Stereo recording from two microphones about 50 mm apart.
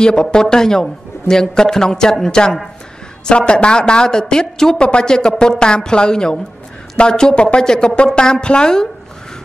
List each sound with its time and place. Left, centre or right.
0.0 s a man's voice: centre